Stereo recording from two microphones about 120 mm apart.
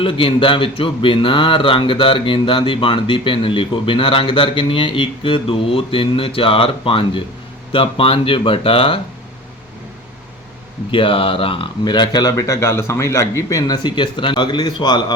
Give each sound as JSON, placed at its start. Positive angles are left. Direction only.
{"t": 0.0, "sound": "speech", "side_deg": 45}
{"t": 10.9, "sound": "speech", "side_deg": 50}